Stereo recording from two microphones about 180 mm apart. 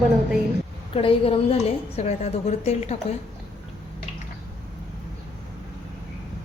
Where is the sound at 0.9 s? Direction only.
30° left (ahead or behind).